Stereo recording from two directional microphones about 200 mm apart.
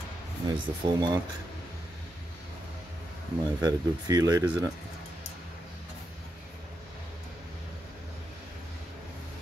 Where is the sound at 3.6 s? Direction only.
20° right (ahead or behind).